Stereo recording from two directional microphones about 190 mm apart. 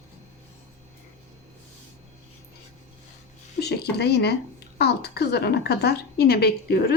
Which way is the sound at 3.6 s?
60° left (ahead or behind).